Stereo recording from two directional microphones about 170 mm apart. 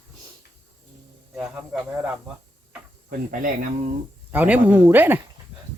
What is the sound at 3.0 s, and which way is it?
Speech, 55° right (ahead or behind).